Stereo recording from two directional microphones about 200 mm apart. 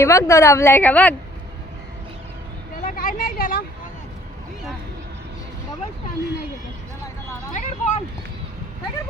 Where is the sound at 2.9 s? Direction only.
45° left (ahead or behind).